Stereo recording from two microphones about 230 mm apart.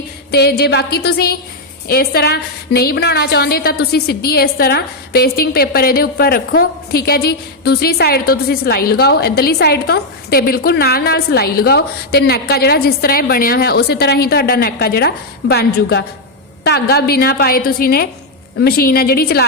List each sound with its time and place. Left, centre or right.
0.3 s a woman's voice: left